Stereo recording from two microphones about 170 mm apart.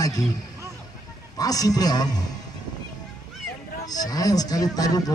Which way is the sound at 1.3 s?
20° left (ahead or behind).